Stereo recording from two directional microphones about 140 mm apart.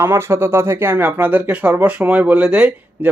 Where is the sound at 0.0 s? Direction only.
20° right (ahead or behind).